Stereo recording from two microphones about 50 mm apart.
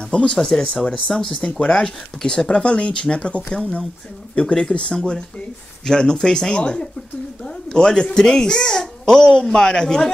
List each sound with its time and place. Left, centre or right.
0.1 s a child's voice: left